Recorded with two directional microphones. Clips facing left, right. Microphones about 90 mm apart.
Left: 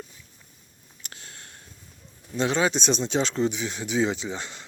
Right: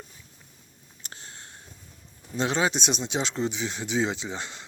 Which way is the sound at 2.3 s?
30° right (ahead or behind).